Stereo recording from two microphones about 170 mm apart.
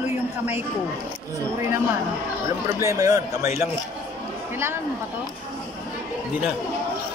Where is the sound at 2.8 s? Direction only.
20° right (ahead or behind).